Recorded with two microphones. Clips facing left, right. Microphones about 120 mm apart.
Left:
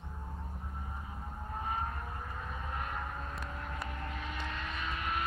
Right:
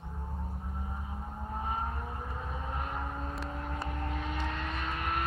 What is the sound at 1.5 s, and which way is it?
Vehicle, 20° right (ahead or behind).